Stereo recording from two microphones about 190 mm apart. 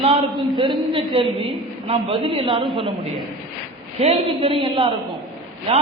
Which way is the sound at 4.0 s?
30° right (ahead or behind).